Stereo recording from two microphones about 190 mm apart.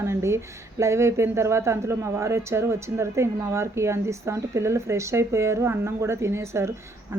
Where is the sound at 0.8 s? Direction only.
15° right (ahead or behind).